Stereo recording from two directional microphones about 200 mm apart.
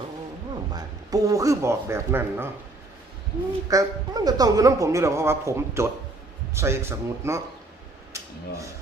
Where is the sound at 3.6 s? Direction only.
15° right (ahead or behind).